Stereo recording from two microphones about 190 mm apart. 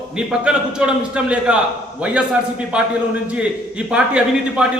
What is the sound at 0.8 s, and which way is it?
A man's voice, 5° right (ahead or behind).